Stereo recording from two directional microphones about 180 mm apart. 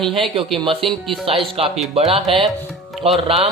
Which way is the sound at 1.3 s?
30° right (ahead or behind).